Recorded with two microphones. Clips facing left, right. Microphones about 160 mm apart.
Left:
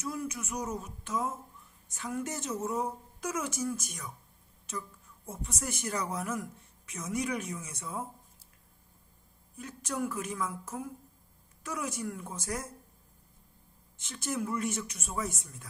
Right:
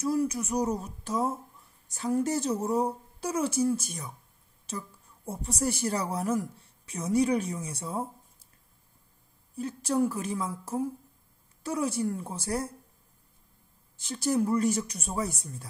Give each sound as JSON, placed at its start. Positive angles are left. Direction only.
{"t": 0.0, "sound": "speech", "side_deg": -35}
{"t": 9.6, "sound": "speech", "side_deg": -30}
{"t": 13.9, "sound": "speech", "side_deg": -35}